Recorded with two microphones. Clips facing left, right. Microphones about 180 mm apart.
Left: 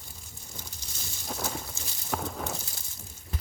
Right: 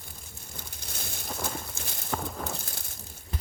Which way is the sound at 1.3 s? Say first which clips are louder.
Left 1 dB; 5° left (ahead or behind).